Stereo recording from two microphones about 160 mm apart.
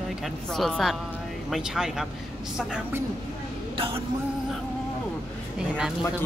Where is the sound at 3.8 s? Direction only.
35° right (ahead or behind).